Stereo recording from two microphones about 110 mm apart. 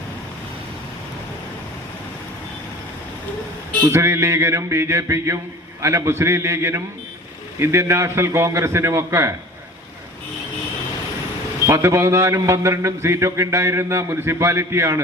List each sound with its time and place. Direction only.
3.8 s a man's voice: 25° right (ahead or behind)
11.6 s a man's voice: 25° right (ahead or behind)